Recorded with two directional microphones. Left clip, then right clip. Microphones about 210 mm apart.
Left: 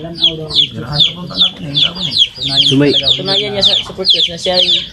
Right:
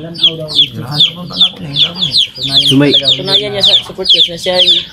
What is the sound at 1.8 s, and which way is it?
Speech, 45° right (ahead or behind).